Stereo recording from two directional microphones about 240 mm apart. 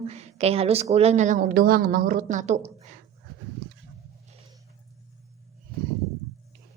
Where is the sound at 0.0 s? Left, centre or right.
Right.